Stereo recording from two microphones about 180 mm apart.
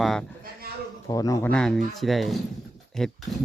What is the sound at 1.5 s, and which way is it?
Speech, 5° left (ahead or behind).